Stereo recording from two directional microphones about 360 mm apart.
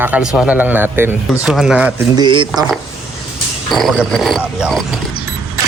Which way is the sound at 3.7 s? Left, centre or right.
Centre.